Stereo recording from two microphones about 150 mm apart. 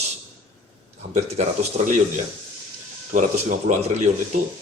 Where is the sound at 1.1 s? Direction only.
50° right (ahead or behind).